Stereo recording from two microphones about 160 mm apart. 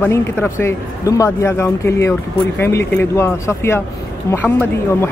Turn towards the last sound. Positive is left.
turn(degrees=15)  # may be behind; listen again after turning